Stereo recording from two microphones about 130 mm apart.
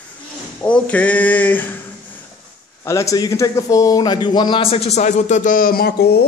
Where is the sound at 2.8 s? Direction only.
25° left (ahead or behind); by 5.7 s 85° left.